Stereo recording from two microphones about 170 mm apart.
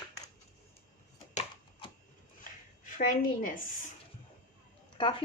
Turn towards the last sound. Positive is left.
turn(degrees=30)  # may be behind; listen again after turning